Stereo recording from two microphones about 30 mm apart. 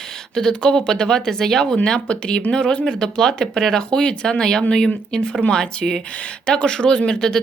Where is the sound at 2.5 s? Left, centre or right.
Left.